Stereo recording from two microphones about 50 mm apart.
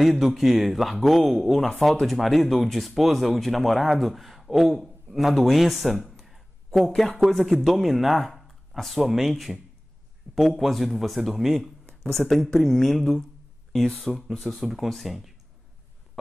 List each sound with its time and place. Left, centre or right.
0.0 s a man's voice: centre
5.9 s a sound: centre
7.2 s speech: centre